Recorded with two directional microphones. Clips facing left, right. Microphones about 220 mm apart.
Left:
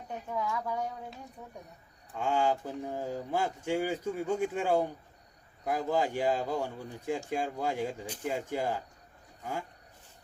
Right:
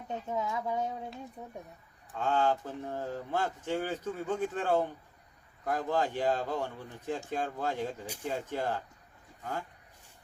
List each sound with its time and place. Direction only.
0.1 s speech: 20° right (ahead or behind)
2.1 s speech: 10° left (ahead or behind)